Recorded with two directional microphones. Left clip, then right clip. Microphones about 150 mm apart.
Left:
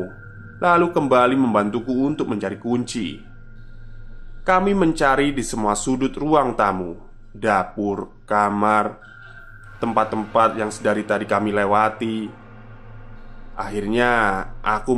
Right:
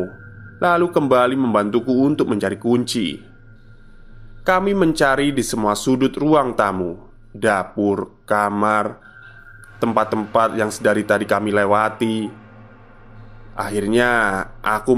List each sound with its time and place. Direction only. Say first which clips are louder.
0.6 s speech: even; 35° right (ahead or behind)
4.5 s speech: right 1 dB; 30° right (ahead or behind)
13.6 s speech: right 3 dB; 30° right (ahead or behind)